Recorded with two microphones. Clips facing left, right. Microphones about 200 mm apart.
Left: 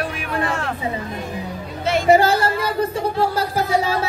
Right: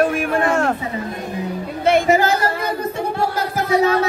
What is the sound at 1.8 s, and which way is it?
Music, 55° right (ahead or behind).